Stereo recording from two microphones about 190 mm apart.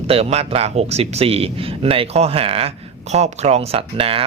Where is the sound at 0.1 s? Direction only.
30° right (ahead or behind).